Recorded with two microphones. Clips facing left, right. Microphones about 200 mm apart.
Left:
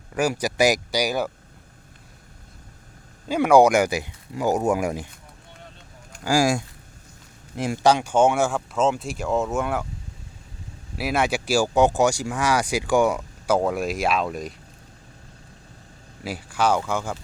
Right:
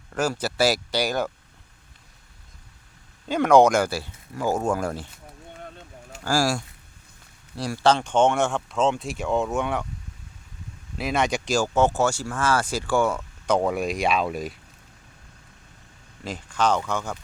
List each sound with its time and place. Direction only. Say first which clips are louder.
0.1 s speech: left 2 dB; 15° left (ahead or behind)
3.2 s speech: left 1 dB; 10° left (ahead or behind)
6.2 s speech: left 3 dB; 20° left (ahead or behind); by 9.8 s centre (ahead or behind)
10.9 s speech: left 1 dB; 5° left (ahead or behind)
13.6 s speech: even; centre (ahead or behind)
16.2 s speech: left 1 dB; 10° left (ahead or behind)